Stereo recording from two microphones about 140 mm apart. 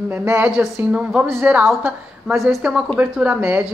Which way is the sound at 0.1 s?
15° right (ahead or behind).